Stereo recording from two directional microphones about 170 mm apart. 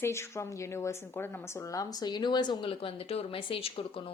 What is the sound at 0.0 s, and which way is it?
A woman's voice, 15° left (ahead or behind).